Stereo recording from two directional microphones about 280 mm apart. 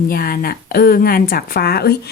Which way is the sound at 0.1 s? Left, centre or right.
Left.